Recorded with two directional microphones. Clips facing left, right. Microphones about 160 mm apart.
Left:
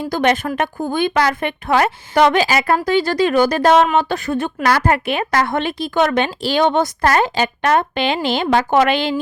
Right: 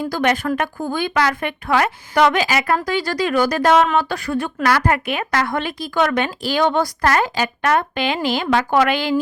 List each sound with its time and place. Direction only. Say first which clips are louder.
0.1 s a woman's voice: left 4 dB; 25° left (ahead or behind)